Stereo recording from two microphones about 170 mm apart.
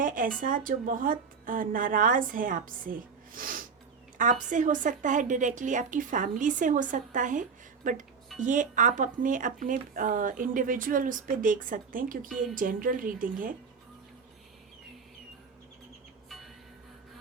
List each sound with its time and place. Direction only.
0.0 s speech: 55° right (ahead or behind)